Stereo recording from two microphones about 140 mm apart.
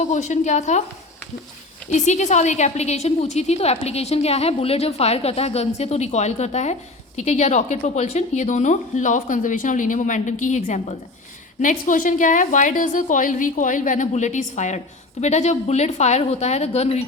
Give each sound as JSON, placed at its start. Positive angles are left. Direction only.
{"t": 0.0, "sound": "a woman's voice", "side_deg": 55}
{"t": 1.9, "sound": "a woman's voice", "side_deg": 55}
{"t": 11.6, "sound": "a woman's voice", "side_deg": 65}